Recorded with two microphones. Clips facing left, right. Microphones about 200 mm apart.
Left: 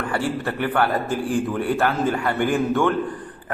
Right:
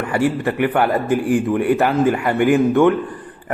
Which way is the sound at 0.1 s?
15° right (ahead or behind).